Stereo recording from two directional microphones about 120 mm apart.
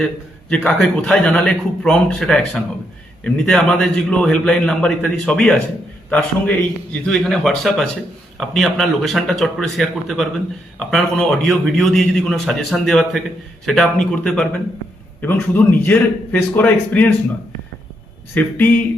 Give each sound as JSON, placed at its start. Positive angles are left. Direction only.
{"t": 0.5, "sound": "a man's voice", "side_deg": 5}
{"t": 18.3, "sound": "a man's voice", "side_deg": 15}